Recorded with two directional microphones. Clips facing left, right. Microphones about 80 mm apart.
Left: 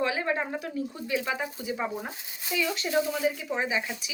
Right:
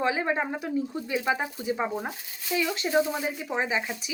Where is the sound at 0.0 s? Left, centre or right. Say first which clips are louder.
Right 2 dB; right.